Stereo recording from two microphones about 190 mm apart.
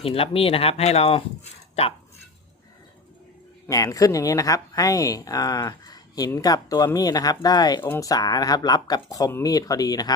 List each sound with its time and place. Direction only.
0.0 s speech: 30° left (ahead or behind)
3.7 s speech: 20° left (ahead or behind)